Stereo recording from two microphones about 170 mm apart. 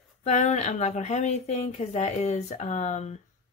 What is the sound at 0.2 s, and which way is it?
Speech, 45° left (ahead or behind).